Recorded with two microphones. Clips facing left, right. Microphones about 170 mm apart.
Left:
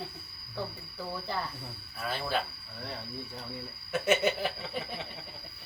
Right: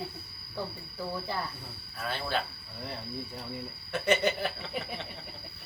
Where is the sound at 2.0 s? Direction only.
5° left (ahead or behind).